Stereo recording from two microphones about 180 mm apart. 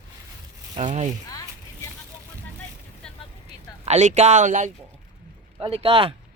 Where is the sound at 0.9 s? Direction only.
40° right (ahead or behind).